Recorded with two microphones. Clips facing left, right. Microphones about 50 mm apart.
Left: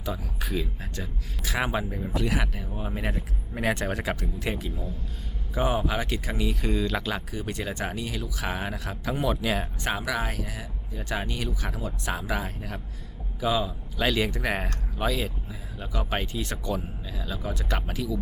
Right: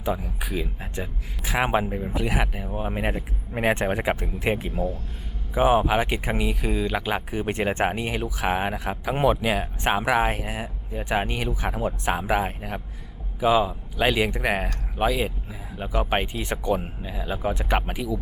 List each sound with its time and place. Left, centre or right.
0.0 s a man's voice: right
0.4 s speech: centre
0.8 s speech: right
4.7 s speech: right
5.5 s speech: right
6.6 s speech: centre
9.8 s speech: right